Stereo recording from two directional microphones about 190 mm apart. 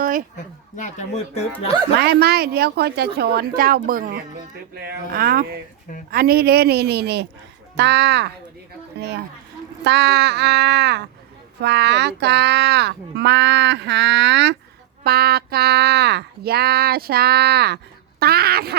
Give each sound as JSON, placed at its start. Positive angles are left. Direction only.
{"t": 0.0, "sound": "a sound", "side_deg": -50}
{"t": 0.3, "sound": "speech", "side_deg": 40}
{"t": 2.0, "sound": "speech", "side_deg": -55}